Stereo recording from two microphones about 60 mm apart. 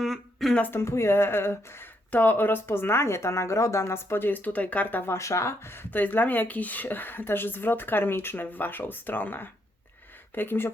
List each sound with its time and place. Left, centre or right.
0.0 s a sound: centre
0.7 s speech: left
2.0 s speech: left
5.0 s speech: left
6.0 s speech: left